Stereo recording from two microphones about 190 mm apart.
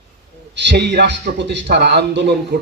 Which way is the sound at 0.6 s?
65° right (ahead or behind).